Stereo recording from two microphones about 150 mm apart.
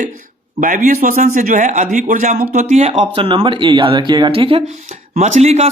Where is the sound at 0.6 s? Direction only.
65° right (ahead or behind); by 4.6 s 40° right (ahead or behind).